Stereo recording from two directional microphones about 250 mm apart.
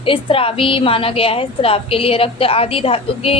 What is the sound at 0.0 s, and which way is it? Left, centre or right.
A woman's voice, left.